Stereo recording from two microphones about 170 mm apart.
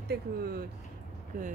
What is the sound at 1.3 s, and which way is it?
Speech, 55° right (ahead or behind).